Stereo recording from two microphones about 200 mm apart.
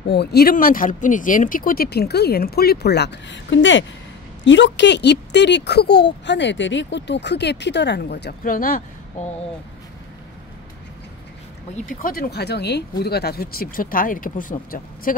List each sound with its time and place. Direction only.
0.1 s speech: 55° left (ahead or behind)
11.8 s speech: 45° left (ahead or behind)